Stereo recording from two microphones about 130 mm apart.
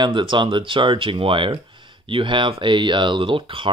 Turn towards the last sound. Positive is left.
turn(degrees=-40)  # may be behind; listen again after turning